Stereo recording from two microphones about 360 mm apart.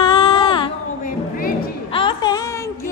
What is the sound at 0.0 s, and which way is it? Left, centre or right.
Music, centre.